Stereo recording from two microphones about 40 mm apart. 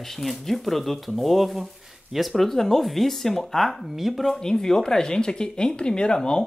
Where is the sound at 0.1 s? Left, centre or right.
Centre.